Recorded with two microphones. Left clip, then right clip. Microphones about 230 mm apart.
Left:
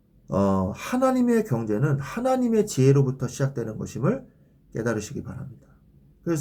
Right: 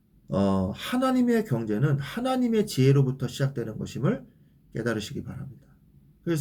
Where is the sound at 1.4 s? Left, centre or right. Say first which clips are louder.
Left 3 dB; centre.